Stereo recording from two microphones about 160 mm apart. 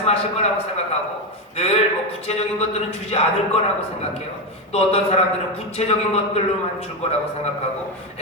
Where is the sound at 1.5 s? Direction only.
40° left (ahead or behind).